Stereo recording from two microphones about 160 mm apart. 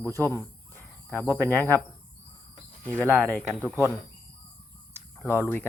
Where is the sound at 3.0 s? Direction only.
15° right (ahead or behind).